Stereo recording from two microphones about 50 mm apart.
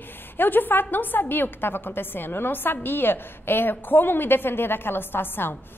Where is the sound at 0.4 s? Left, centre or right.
Left.